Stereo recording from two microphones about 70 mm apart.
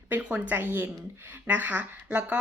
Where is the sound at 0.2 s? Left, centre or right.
Centre.